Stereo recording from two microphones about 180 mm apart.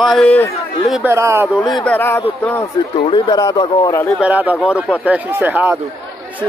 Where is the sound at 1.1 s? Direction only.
15° right (ahead or behind).